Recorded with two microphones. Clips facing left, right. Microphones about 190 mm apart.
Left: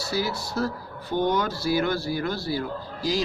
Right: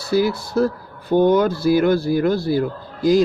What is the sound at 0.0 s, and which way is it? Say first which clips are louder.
Speech: right 9 dB; 55° right (ahead or behind).